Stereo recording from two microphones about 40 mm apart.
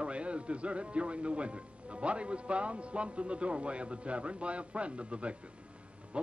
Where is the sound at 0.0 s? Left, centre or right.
Right.